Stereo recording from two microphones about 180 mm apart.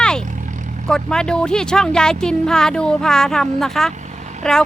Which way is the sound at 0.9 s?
5° left (ahead or behind).